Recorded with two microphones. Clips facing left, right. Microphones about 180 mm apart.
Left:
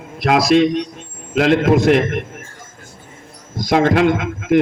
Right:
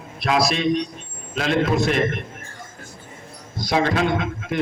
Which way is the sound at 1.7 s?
85° left.